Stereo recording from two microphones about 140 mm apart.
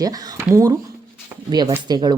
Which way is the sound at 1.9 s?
30° right (ahead or behind).